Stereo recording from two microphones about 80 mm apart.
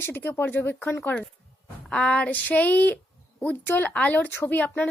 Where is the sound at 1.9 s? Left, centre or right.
Centre.